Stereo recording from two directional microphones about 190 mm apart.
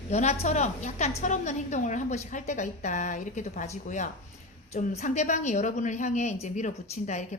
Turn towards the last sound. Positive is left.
turn(degrees=40)  # may be behind; listen again after turning